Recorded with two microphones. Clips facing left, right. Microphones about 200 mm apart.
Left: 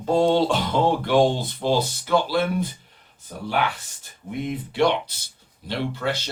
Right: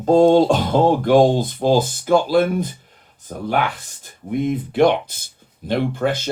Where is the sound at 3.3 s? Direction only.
55° right (ahead or behind).